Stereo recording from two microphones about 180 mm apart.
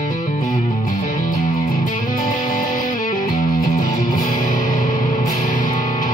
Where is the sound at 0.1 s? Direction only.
50° left (ahead or behind).